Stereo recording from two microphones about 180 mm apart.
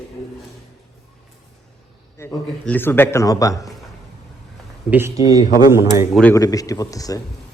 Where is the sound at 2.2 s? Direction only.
10° left (ahead or behind).